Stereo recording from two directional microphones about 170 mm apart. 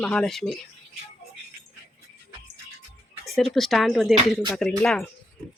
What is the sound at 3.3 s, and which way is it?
Speech, centre (ahead or behind).